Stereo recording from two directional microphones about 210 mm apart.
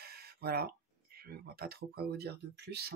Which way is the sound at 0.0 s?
50° right (ahead or behind).